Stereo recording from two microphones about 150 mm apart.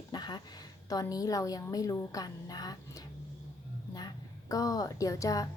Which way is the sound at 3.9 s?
25° left (ahead or behind).